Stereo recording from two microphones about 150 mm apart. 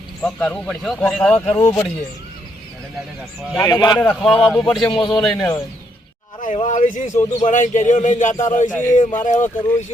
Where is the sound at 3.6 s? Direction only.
25° left (ahead or behind).